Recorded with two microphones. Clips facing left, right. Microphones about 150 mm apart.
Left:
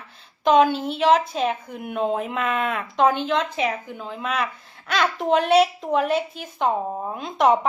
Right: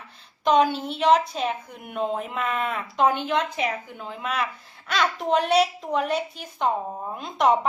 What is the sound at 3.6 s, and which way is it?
Speech, 50° left (ahead or behind).